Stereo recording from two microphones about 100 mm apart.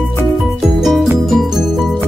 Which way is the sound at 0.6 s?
5° right (ahead or behind).